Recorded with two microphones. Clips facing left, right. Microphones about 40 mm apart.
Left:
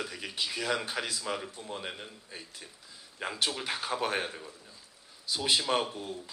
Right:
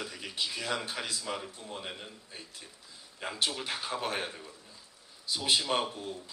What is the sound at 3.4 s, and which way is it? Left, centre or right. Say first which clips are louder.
Speech: even; left.